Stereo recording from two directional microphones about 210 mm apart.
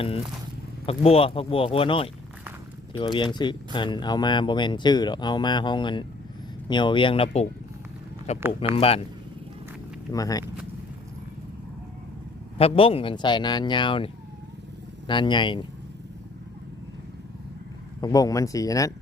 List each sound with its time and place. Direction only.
0.9 s speech: 30° left (ahead or behind)
8.4 s speech: 10° right (ahead or behind)
8.7 s speech: 30° left (ahead or behind)
10.1 s speech: 15° left (ahead or behind)
12.5 s speech: 25° left (ahead or behind)
18.0 s speech: 15° left (ahead or behind)